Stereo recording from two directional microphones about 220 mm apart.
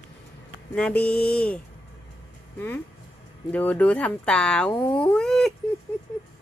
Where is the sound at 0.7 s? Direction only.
5° left (ahead or behind).